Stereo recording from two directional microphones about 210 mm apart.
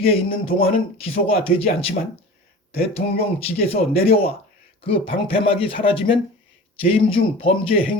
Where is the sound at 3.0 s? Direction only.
30° left (ahead or behind).